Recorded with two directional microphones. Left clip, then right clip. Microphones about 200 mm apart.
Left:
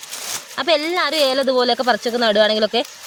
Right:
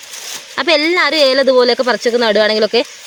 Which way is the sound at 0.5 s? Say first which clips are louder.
Right 6 dB; 30° right (ahead or behind).